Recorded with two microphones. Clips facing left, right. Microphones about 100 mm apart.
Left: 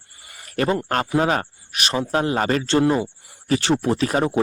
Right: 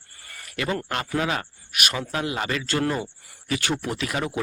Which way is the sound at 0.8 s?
40° left (ahead or behind).